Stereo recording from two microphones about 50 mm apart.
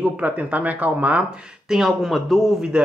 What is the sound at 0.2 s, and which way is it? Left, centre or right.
Speech, right.